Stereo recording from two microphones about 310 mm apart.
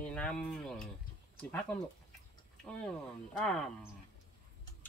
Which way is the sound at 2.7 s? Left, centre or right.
Centre.